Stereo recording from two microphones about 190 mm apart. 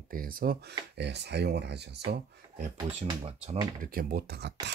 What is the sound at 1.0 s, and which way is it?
Speech, 65° right (ahead or behind).